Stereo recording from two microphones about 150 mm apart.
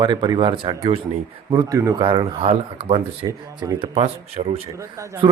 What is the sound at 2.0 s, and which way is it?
Speech, 35° right (ahead or behind).